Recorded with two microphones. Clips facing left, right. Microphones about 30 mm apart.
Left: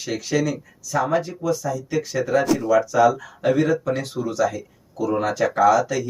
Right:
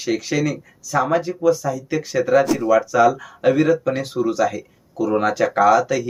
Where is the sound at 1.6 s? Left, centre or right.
Right.